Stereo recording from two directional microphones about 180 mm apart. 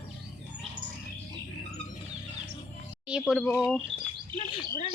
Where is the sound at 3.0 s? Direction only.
5° right (ahead or behind).